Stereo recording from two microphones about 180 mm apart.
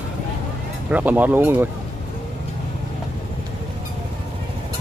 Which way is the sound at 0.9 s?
10° right (ahead or behind).